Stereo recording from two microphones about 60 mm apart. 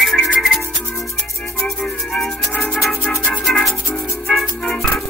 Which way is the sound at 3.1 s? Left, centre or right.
Centre.